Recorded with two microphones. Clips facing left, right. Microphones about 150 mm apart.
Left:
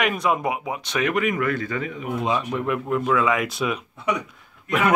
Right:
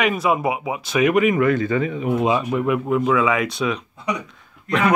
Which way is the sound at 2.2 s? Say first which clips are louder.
Right 3 dB; 10° right (ahead or behind).